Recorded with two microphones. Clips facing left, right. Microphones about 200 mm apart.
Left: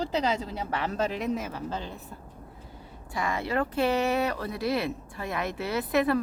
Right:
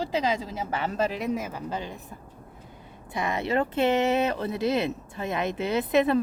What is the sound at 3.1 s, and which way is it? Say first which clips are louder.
Speech: right 3 dB; 20° right (ahead or behind).